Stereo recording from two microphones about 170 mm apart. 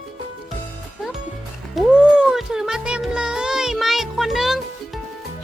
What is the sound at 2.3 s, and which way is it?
Music, 5° right (ahead or behind).